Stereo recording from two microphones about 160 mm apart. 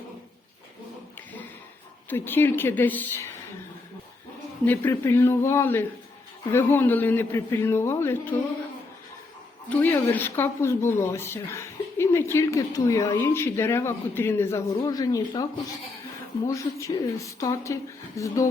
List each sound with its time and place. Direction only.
2.0 s speech: 15° left (ahead or behind)
4.6 s speech: 10° left (ahead or behind)
9.6 s speech: 10° left (ahead or behind)
16.5 s speech: 20° left (ahead or behind)